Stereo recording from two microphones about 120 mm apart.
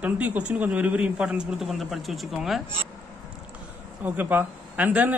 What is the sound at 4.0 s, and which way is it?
A man's voice, 15° right (ahead or behind).